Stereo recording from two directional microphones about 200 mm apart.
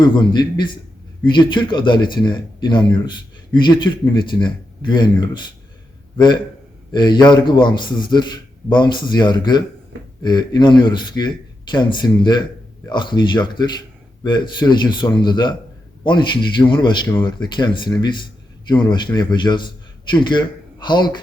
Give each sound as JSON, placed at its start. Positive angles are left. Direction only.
{"t": 0.0, "sound": "a man's voice", "side_deg": 20}